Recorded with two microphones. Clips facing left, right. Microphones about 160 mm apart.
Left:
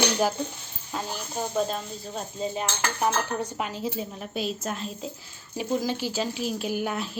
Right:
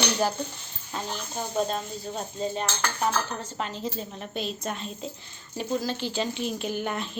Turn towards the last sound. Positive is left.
turn(degrees=5)  # may be behind; listen again after turning